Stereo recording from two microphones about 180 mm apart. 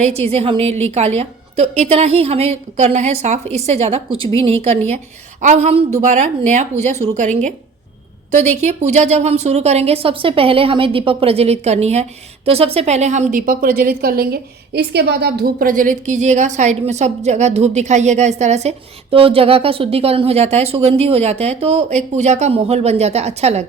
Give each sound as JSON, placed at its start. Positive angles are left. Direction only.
{"t": 0.3, "sound": "a woman's voice", "side_deg": -35}